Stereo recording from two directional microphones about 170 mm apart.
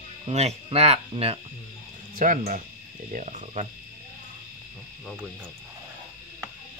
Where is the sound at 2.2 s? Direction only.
50° right (ahead or behind).